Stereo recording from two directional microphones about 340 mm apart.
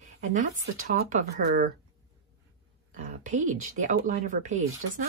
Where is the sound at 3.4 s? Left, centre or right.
Right.